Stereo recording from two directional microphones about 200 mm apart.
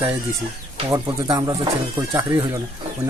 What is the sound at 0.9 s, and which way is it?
Speech, 20° right (ahead or behind).